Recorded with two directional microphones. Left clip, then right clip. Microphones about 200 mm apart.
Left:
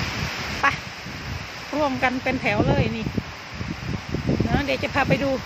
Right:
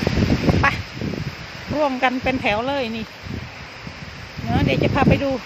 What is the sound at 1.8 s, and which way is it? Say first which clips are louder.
Speech: right 3 dB; 20° right (ahead or behind).